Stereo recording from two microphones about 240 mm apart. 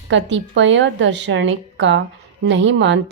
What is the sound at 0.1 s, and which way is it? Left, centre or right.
A woman's voice, right.